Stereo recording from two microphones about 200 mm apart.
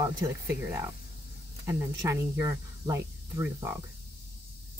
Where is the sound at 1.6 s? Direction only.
15° right (ahead or behind).